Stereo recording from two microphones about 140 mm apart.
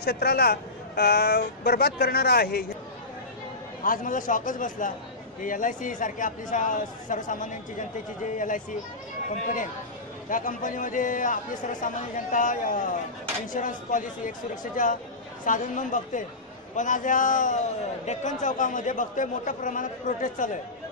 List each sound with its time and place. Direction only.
0.0 s a man's voice: 90° left
1.6 s a man's voice: 90° left
3.8 s a man's voice: 75° left (ahead or behind)